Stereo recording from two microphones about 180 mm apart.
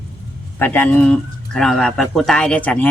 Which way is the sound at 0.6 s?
10° left (ahead or behind).